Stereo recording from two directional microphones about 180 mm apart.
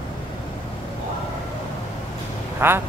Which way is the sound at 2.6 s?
15° right (ahead or behind).